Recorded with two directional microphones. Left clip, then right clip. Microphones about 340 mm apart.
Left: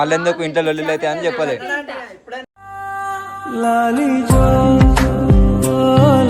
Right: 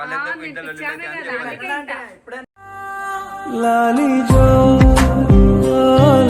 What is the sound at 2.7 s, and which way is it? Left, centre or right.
Music, centre.